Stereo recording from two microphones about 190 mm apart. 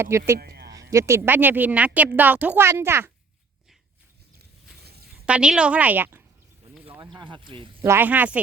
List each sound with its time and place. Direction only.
0.3 s a sound: 55° right (ahead or behind)
0.7 s speech: 20° right (ahead or behind)
4.4 s a sound: 60° right (ahead or behind)
5.2 s speech: 5° right (ahead or behind)
7.2 s speech: 25° right (ahead or behind)
7.8 s speech: 10° right (ahead or behind)